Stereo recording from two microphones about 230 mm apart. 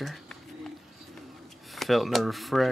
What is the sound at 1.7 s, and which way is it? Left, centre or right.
Speech, centre.